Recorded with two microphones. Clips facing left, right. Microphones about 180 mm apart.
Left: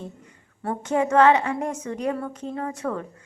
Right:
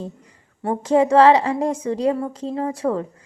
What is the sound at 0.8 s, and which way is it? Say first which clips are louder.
A woman's voice: right 5 dB; 30° right (ahead or behind).